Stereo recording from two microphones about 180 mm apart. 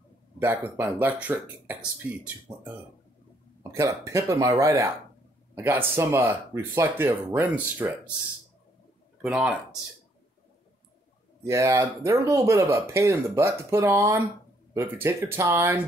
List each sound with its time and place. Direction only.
0.4 s speech: 15° right (ahead or behind)
3.7 s speech: 15° right (ahead or behind)
9.2 s speech: 5° right (ahead or behind)
11.4 s speech: 15° right (ahead or behind)